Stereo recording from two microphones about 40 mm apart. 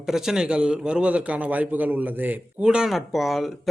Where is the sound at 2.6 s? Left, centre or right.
Right.